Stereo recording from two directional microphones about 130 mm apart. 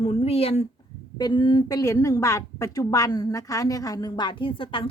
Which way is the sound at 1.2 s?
35° left (ahead or behind).